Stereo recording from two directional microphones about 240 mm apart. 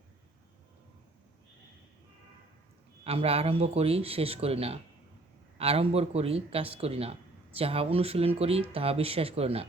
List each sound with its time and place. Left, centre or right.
3.0 s speech: right